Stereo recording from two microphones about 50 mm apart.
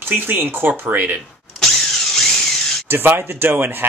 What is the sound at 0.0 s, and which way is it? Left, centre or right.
Speech, right.